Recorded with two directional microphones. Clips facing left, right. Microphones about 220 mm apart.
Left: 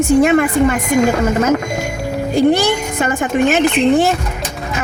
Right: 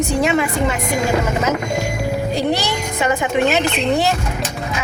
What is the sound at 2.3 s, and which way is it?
A woman's voice, 50° left (ahead or behind).